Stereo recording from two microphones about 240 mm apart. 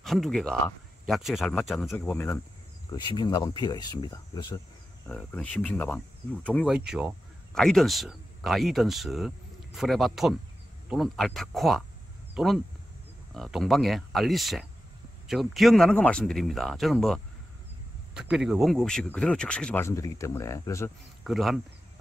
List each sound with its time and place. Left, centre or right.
0.0 s speech: centre
5.0 s speech: centre
18.3 s speech: centre
21.2 s speech: centre